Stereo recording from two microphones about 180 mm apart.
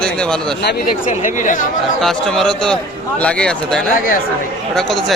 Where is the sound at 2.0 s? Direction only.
Centre (ahead or behind).